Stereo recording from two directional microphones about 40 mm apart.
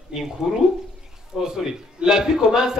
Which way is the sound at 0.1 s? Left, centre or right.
Centre.